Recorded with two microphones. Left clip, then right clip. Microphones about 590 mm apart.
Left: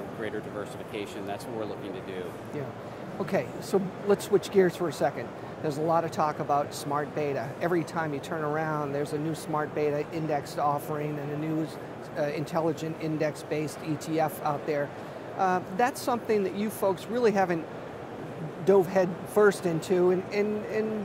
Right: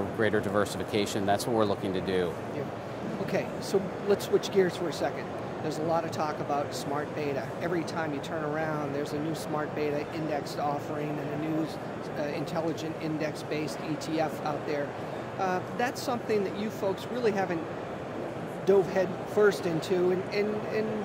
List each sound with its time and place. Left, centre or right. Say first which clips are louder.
0.2 s speech: right 9 dB; right
3.7 s speech: left 2 dB; left
9.3 s speech: left 2 dB; left
12.2 s speech: left 4 dB; left
18.7 s speech: left 2 dB; left